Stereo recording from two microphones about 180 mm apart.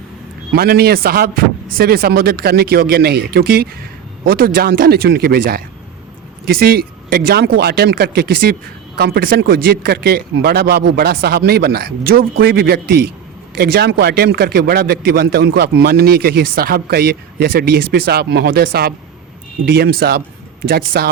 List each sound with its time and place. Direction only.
0.5 s speech: 60° right (ahead or behind)